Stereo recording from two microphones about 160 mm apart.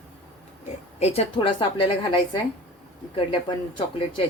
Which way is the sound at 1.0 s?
40° left (ahead or behind).